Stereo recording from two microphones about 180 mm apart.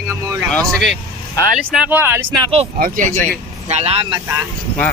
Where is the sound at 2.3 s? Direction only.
30° right (ahead or behind).